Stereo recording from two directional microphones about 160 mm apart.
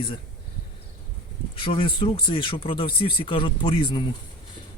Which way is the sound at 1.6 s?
35° left (ahead or behind).